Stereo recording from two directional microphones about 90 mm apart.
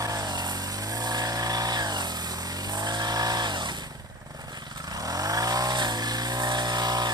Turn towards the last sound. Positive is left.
turn(degrees=-50)  # may be behind; listen again after turning